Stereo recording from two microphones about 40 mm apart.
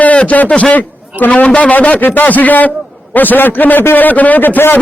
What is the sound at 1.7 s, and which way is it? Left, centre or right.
A man's voice, left.